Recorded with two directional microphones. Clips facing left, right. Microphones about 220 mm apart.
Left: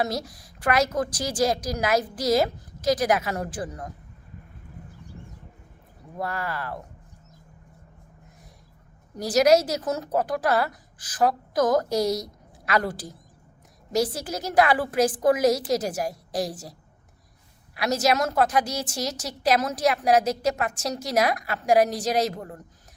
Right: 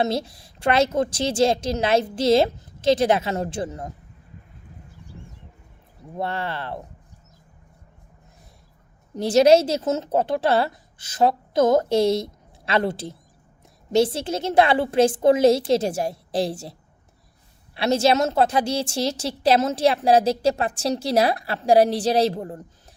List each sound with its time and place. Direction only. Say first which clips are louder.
0.0 s a woman's voice: right 4 dB; 25° right (ahead or behind)
6.1 s a woman's voice: right 3 dB; 25° right (ahead or behind)
9.1 s a woman's voice: right 4 dB; 25° right (ahead or behind)
17.7 s a woman's voice: right 4 dB; 30° right (ahead or behind)